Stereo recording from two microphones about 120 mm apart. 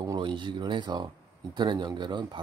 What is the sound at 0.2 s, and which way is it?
A man's voice, 45° right (ahead or behind).